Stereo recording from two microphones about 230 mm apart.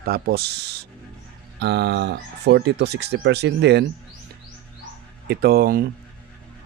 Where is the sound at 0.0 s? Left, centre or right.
Right.